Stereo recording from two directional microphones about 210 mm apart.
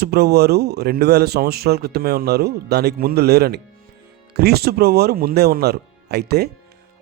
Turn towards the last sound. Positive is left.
turn(degrees=-50)  # may be behind; listen again after turning